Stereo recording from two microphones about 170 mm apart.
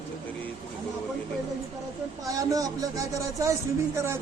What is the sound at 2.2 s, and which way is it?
A man's voice, 20° right (ahead or behind).